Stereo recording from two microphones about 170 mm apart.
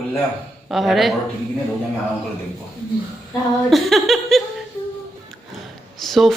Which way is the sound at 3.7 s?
Centre (ahead or behind).